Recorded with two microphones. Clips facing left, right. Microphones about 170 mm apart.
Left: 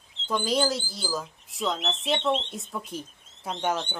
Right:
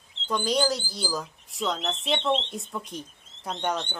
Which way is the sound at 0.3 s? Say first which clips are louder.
Even; centre (ahead or behind).